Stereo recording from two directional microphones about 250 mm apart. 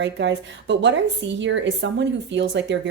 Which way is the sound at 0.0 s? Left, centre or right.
Right.